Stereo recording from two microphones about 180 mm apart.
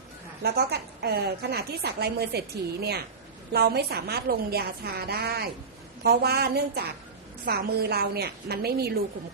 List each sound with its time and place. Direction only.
0.4 s a woman's voice: 60° right (ahead or behind)
3.5 s a woman's voice: 60° right (ahead or behind)